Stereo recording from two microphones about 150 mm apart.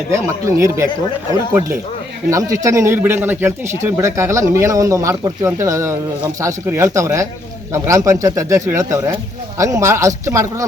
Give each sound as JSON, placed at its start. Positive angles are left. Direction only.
{"t": 0.1, "sound": "a man's voice", "side_deg": -20}